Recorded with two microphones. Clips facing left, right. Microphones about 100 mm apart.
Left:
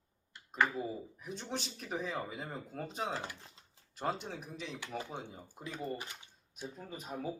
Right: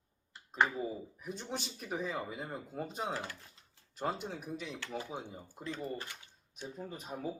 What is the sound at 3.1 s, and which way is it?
Speech, 20° left (ahead or behind).